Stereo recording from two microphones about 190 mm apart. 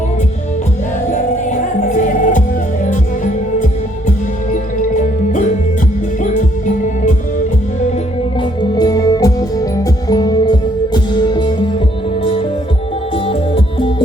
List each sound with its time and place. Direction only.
1.1 s music: 40° left (ahead or behind)
8.4 s music: 20° left (ahead or behind)